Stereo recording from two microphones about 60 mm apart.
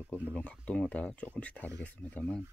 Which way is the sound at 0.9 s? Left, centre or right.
Left.